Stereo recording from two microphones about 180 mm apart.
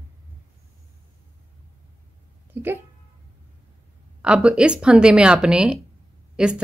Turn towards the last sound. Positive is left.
turn(degrees=-5)  # may be behind; listen again after turning